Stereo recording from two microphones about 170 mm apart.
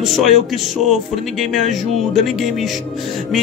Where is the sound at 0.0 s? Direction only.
Centre (ahead or behind).